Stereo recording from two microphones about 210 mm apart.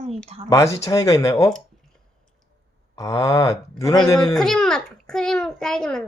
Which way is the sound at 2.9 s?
15° left (ahead or behind).